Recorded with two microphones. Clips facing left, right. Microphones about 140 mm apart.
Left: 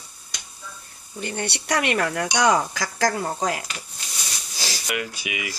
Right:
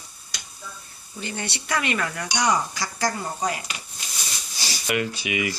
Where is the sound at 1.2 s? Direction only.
55° left (ahead or behind).